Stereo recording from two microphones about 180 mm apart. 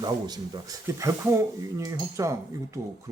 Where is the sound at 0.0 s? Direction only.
20° right (ahead or behind).